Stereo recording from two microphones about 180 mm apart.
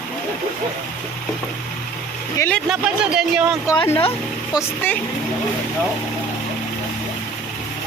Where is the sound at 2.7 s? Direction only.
5° right (ahead or behind).